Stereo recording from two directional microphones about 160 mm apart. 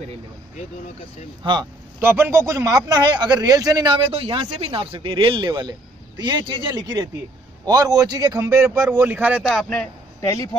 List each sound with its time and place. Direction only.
1.4 s a man's voice: 30° right (ahead or behind)
2.0 s a man's voice: 10° right (ahead or behind)
9.5 s a man's voice: 5° left (ahead or behind)
10.2 s speech: 20° left (ahead or behind)